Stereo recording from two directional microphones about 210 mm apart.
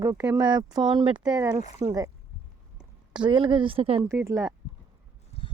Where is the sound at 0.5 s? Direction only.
20° right (ahead or behind).